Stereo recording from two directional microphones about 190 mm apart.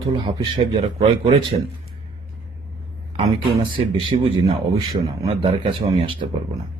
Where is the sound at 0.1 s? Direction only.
25° right (ahead or behind).